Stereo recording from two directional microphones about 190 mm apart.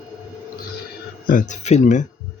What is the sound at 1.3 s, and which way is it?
Speech, 40° left (ahead or behind).